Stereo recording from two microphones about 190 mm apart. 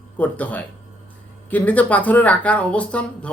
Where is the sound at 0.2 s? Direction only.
10° left (ahead or behind).